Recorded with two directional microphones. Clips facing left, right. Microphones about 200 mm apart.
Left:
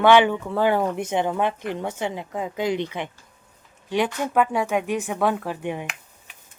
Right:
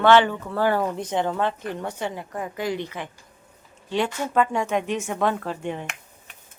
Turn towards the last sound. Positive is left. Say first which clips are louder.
# left 1 dB
turn(degrees=10)  # may be behind; listen again after turning